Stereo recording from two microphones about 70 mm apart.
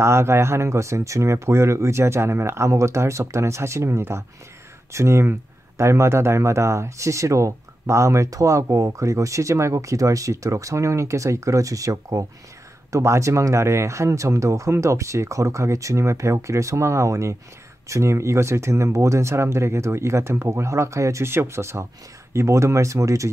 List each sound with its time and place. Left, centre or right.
0.0 s speech: right